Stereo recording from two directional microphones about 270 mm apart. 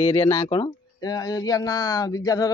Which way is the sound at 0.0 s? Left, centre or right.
Centre.